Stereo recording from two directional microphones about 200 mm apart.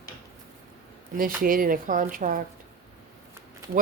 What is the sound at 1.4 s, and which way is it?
Speech, 45° right (ahead or behind).